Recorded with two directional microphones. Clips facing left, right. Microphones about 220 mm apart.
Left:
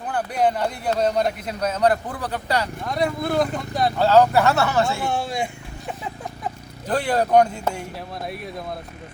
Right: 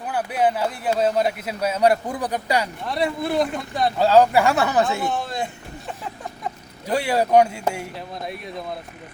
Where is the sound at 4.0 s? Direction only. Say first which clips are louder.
Right 1 dB; 10° right (ahead or behind).